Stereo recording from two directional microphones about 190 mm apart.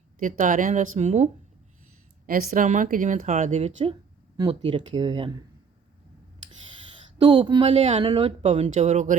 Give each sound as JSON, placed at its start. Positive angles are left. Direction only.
{"t": 0.2, "sound": "speech", "side_deg": -45}
{"t": 4.4, "sound": "speech", "side_deg": -25}
{"t": 7.2, "sound": "speech", "side_deg": -25}